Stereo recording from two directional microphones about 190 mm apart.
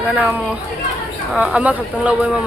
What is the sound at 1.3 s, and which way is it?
Speech, 5° right (ahead or behind).